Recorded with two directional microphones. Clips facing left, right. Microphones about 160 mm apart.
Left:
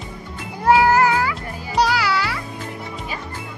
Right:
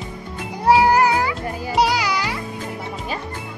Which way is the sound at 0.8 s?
15° right (ahead or behind).